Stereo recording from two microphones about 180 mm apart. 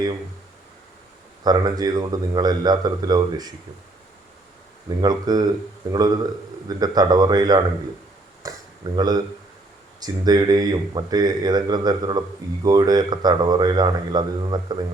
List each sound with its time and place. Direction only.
1.5 s speech: 20° right (ahead or behind)
4.9 s speech: 20° right (ahead or behind)
8.4 s a sound: 20° right (ahead or behind)
9.0 s speech: 20° right (ahead or behind)